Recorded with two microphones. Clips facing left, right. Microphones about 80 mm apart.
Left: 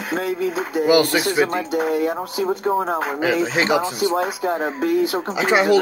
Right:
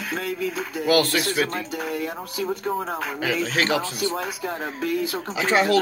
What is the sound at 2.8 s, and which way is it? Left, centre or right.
Speech, left.